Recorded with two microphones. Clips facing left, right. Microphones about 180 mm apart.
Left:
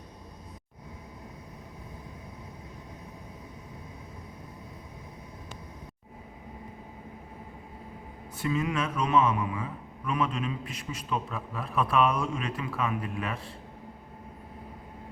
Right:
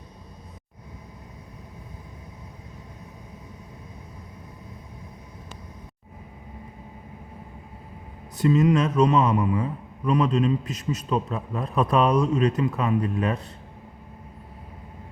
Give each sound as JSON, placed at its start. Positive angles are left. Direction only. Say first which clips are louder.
{"t": 8.4, "sound": "a man's voice", "louder": "right 9 dB", "side_deg": -35}